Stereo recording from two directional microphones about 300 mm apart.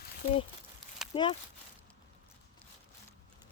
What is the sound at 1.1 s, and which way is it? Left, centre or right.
Speech, centre.